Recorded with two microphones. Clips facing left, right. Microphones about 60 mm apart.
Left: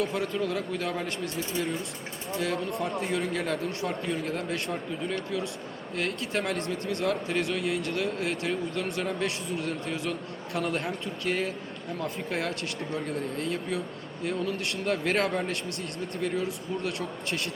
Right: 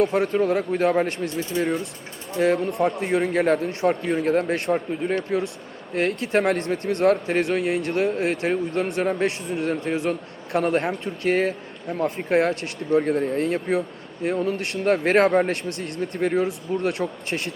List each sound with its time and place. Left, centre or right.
0.0 s a man's voice: right
2.6 s speech: right
3.0 s a man's voice: right
15.8 s speech: right
16.3 s speech: right